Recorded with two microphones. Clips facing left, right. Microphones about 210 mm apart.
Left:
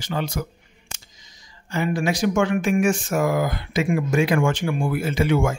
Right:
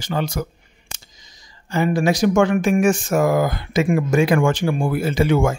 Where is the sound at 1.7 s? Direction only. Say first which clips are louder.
Right 5 dB; 40° right (ahead or behind).